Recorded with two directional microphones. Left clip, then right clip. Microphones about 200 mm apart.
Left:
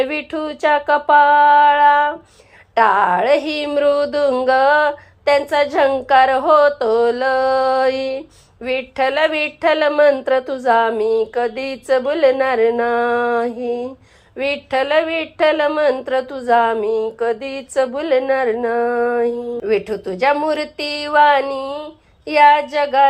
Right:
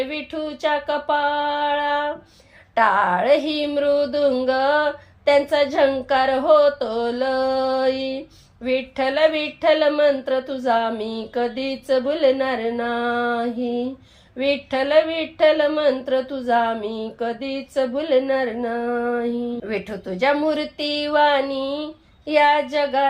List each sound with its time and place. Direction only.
0.0 s speech: 20° left (ahead or behind)